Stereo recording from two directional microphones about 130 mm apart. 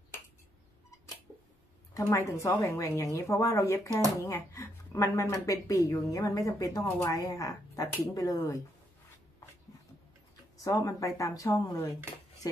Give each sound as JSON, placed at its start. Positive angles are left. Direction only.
{"t": 2.0, "sound": "speech", "side_deg": 20}
{"t": 10.6, "sound": "speech", "side_deg": 25}